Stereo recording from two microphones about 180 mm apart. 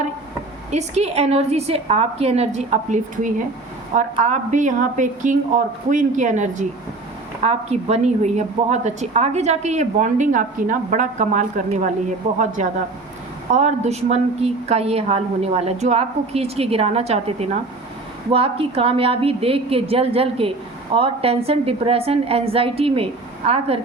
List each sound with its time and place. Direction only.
0.7 s a woman's voice: 40° right (ahead or behind)
13.5 s a woman's voice: 40° right (ahead or behind)